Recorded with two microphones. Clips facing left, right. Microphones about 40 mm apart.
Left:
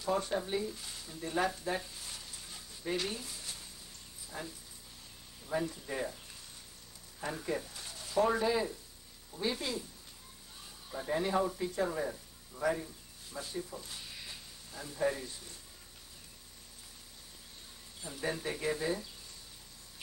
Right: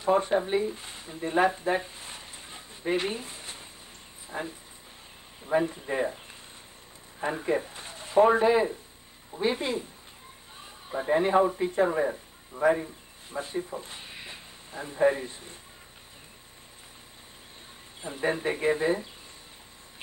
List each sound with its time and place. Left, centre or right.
0.0 s a man's voice: right
18.0 s speech: right